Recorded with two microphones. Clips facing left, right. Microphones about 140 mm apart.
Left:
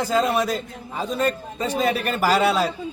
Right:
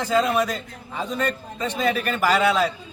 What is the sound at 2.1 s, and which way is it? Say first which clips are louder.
Speech: left 1 dB; 35° left (ahead or behind).